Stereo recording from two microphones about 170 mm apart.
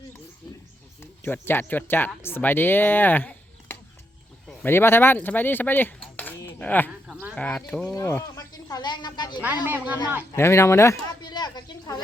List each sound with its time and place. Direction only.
1.2 s speech: 10° left (ahead or behind)
7.9 s speech: 15° left (ahead or behind)
9.6 s speech: 10° right (ahead or behind)
10.3 s a sound: 15° left (ahead or behind)